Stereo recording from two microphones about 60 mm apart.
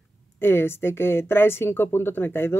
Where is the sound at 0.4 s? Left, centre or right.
Left.